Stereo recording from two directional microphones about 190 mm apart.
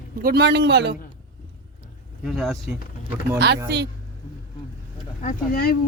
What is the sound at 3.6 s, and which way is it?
Speech, 60° right (ahead or behind).